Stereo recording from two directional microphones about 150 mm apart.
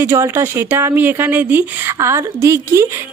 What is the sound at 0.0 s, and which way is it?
A woman's voice, 15° right (ahead or behind).